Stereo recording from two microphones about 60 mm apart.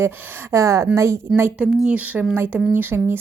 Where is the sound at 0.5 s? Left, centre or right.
Right.